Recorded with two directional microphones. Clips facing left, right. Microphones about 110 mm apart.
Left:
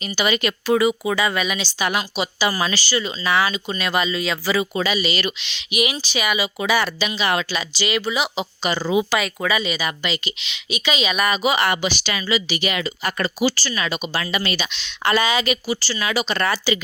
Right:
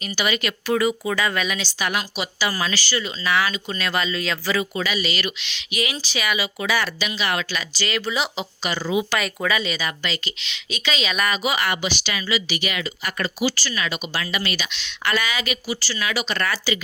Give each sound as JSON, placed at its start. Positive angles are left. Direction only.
{"t": 0.0, "sound": "a woman's voice", "side_deg": 25}
{"t": 4.7, "sound": "speech", "side_deg": 25}
{"t": 8.6, "sound": "speech", "side_deg": 25}
{"t": 9.1, "sound": "a woman's voice", "side_deg": 5}